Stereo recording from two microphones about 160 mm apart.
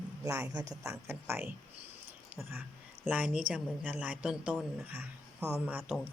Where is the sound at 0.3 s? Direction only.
20° right (ahead or behind).